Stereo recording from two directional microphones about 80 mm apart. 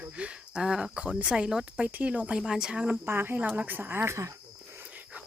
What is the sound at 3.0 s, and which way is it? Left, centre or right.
Speech, right.